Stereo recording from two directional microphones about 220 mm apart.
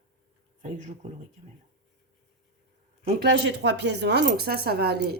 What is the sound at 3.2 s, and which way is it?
Speech, 50° right (ahead or behind).